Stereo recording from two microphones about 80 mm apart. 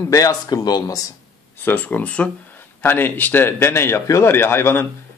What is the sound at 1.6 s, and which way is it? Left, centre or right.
A man's voice, left.